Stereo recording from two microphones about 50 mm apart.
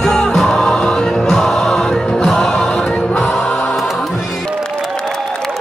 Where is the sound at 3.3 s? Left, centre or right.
Centre.